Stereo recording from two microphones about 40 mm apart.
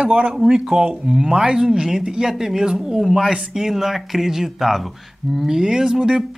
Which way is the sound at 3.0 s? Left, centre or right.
Centre.